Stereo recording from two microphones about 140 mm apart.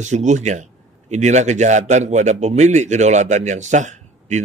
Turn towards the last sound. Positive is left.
turn(degrees=-60)  # may be behind; listen again after turning